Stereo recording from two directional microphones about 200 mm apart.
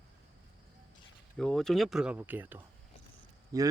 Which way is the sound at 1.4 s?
5° left (ahead or behind).